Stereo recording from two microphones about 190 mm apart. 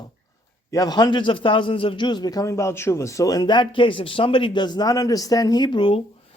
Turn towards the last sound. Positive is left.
turn(degrees=25)  # may be behind; listen again after turning